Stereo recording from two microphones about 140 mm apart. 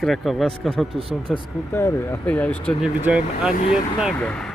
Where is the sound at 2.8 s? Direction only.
5° right (ahead or behind).